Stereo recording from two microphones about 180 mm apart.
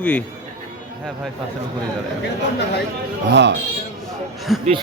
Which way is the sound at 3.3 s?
75° right (ahead or behind).